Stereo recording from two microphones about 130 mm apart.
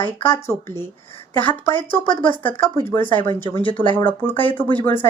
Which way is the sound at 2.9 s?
15° left (ahead or behind).